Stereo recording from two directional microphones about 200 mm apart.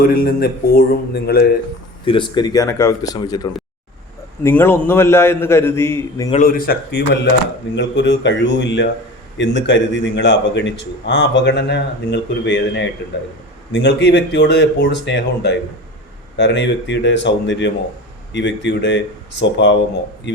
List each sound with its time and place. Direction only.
0.1 s speech: 50° left (ahead or behind)
2.0 s speech: 25° left (ahead or behind)
4.4 s a man's voice: 10° left (ahead or behind)
6.3 s a man's voice: 45° left (ahead or behind); by 20.4 s 65° left (ahead or behind)